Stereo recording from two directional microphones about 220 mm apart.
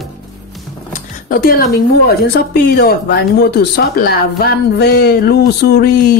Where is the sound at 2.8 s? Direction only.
45° left (ahead or behind).